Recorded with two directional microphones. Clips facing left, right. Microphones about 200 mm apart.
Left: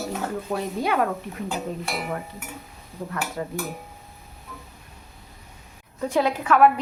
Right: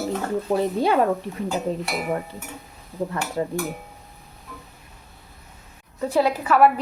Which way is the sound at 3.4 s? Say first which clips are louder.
Right 8 dB; 30° right (ahead or behind).